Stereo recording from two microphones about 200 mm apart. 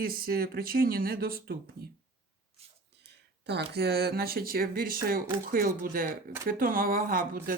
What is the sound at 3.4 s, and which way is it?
Speech, 55° right (ahead or behind).